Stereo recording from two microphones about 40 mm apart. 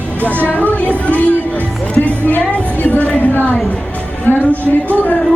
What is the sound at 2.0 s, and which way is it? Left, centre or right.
Music, left.